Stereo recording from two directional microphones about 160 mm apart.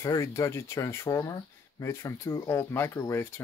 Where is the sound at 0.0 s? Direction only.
20° left (ahead or behind).